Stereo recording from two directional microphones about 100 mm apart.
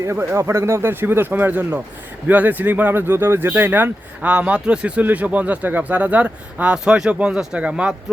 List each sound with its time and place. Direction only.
0.0 s speech: 25° right (ahead or behind)